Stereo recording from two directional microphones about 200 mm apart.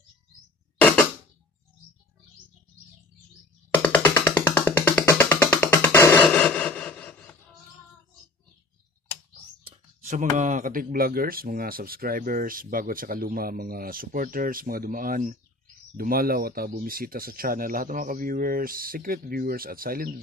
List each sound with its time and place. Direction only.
0.7 s creak: 5° left (ahead or behind)
3.7 s music: 10° left (ahead or behind)
6.3 s a sound: 5° left (ahead or behind)
9.7 s speech: 35° right (ahead or behind)